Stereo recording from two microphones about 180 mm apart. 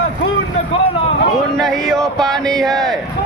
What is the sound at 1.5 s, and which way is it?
A man's voice, centre (ahead or behind).